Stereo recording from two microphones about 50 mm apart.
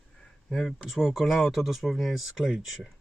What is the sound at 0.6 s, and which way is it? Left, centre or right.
Speech, centre.